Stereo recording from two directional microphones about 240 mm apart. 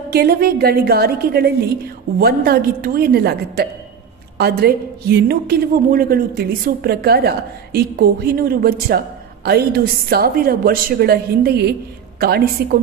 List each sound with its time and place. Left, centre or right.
0.1 s a woman's voice: right